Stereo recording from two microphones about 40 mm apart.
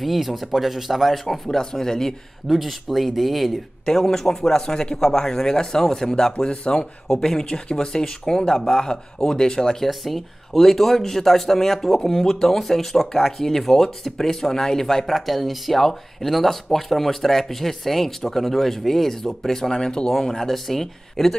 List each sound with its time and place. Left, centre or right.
0.0 s speech: centre
2.4 s speech: centre
3.8 s speech: centre
7.1 s speech: centre
9.8 s speech: centre
10.5 s speech: centre